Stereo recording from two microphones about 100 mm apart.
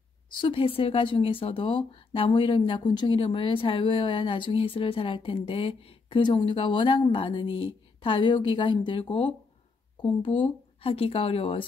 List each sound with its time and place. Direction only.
0.4 s speech: 65° left (ahead or behind)